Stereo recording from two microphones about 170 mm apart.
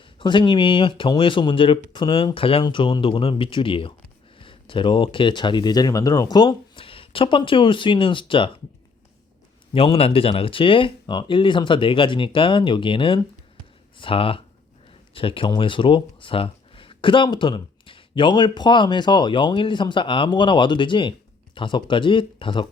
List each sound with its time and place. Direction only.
0.2 s speech: 30° left (ahead or behind)
9.7 s speech: 35° left (ahead or behind)